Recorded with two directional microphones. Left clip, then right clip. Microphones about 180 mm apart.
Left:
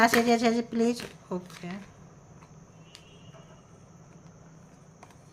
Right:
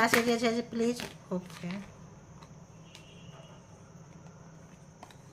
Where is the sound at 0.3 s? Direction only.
30° left (ahead or behind).